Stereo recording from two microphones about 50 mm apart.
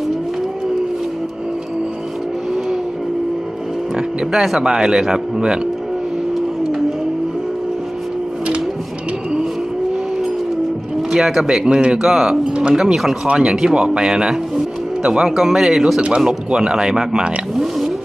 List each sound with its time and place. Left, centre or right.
4.3 s speech: centre
11.1 s speech: centre
12.0 s speech: centre
13.2 s speech: centre